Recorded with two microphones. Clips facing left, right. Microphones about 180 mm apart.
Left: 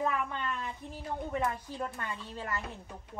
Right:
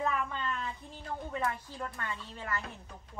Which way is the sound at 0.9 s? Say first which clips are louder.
Left 4 dB; 15° left (ahead or behind).